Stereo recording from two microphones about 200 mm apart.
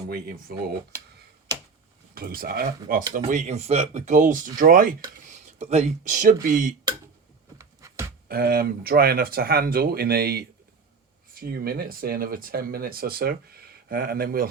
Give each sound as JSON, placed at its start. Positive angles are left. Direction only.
{"t": 0.1, "sound": "speech", "side_deg": -50}
{"t": 2.1, "sound": "speech", "side_deg": -45}
{"t": 7.6, "sound": "a sound", "side_deg": -15}
{"t": 8.3, "sound": "speech", "side_deg": -50}